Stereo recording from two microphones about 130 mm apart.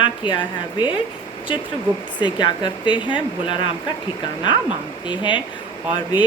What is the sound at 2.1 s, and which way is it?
Speech, 35° left (ahead or behind).